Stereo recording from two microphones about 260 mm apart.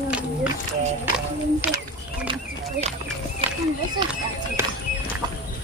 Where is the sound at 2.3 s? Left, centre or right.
Right.